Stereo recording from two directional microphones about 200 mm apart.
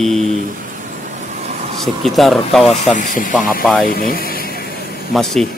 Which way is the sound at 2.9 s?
40° left (ahead or behind).